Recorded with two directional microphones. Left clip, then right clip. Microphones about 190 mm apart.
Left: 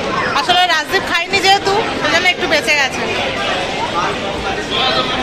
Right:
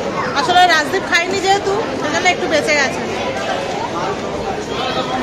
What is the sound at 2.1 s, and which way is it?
Speech, 5° right (ahead or behind).